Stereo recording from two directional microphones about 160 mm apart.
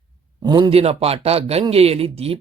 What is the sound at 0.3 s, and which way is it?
Speech, 25° right (ahead or behind).